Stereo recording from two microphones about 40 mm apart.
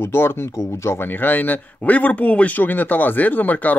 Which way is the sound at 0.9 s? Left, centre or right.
Left.